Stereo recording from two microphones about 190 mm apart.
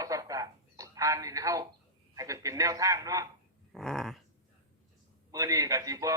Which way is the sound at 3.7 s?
Centre (ahead or behind).